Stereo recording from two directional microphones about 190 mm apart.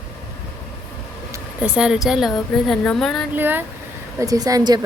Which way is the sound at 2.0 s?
Centre (ahead or behind).